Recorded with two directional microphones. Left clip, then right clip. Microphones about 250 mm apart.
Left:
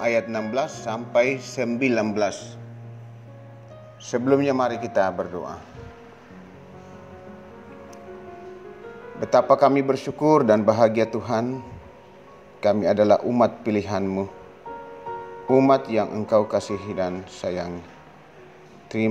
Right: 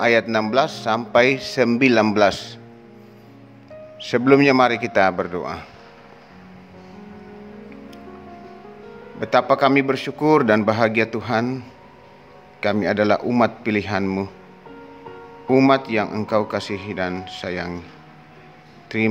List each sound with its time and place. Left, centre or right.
0.0 s a man's voice: right
4.0 s a man's voice: centre
9.2 s a man's voice: centre
15.4 s a man's voice: centre
18.9 s a man's voice: centre